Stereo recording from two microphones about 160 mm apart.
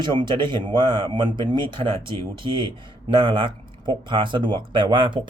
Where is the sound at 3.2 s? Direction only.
30° right (ahead or behind).